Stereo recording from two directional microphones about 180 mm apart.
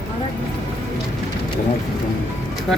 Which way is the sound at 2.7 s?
Centre (ahead or behind).